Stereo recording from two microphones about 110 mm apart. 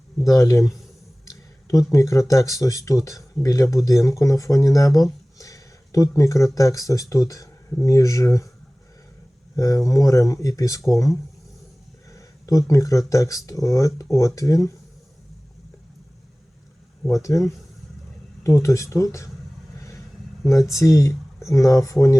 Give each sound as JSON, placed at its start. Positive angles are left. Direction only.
{"t": 0.3, "sound": "speech", "side_deg": 30}
{"t": 1.3, "sound": "a sound", "side_deg": 30}
{"t": 1.9, "sound": "speech", "side_deg": 30}
{"t": 9.6, "sound": "speech", "side_deg": 30}
{"t": 17.1, "sound": "speech", "side_deg": 30}
{"t": 20.7, "sound": "speech", "side_deg": 30}